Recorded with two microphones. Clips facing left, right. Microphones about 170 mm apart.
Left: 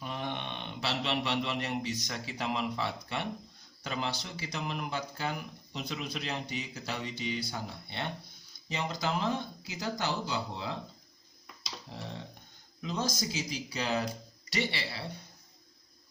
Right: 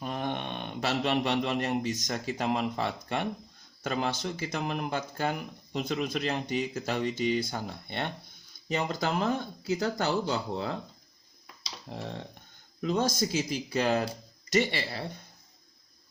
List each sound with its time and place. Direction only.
0.0 s speech: 50° right (ahead or behind)
11.9 s a sound: 55° right (ahead or behind)
12.8 s speech: 55° right (ahead or behind)